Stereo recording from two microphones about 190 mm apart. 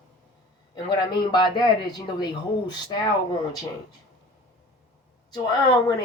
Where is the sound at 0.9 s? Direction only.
25° left (ahead or behind).